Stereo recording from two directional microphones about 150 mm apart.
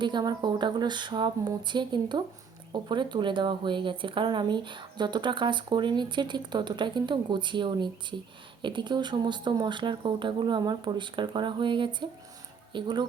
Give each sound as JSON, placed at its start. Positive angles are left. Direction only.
{"t": 0.0, "sound": "speech", "side_deg": -30}